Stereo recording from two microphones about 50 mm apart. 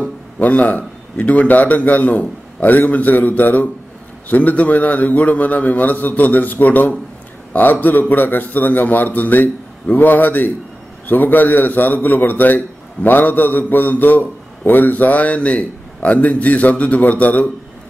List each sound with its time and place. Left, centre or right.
0.0 s a man's voice: left